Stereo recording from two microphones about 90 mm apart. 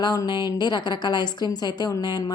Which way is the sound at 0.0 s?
45° left (ahead or behind).